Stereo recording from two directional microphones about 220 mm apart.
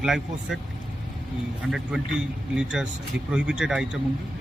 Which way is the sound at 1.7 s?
5° right (ahead or behind).